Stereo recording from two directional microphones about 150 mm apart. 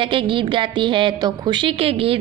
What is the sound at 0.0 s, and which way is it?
A woman's voice, 35° right (ahead or behind).